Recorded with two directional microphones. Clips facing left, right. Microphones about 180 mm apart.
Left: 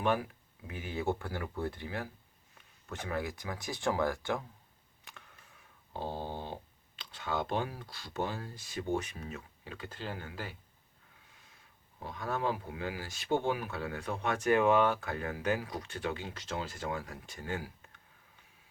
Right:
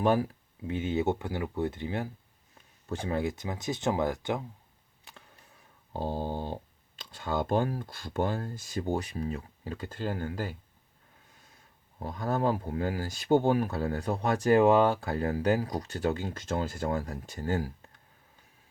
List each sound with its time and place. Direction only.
0.0 s speech: 35° right (ahead or behind)
0.7 s speech: 25° right (ahead or behind)
5.9 s speech: 40° right (ahead or behind)
11.9 s speech: 40° right (ahead or behind)